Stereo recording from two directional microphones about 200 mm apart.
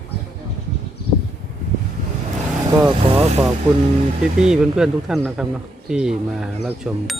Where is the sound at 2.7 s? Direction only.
20° right (ahead or behind).